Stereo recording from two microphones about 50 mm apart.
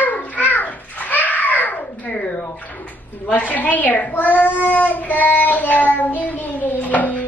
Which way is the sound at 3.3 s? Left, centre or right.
Left.